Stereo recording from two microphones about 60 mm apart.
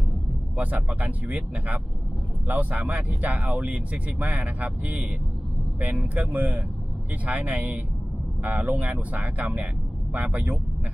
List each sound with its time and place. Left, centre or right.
0.6 s speech: right
2.4 s speech: right